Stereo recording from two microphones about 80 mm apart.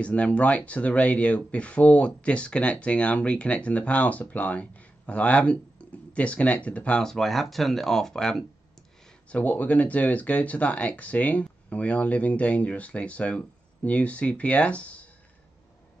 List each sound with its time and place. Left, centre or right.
0.0 s speech: centre
9.3 s speech: centre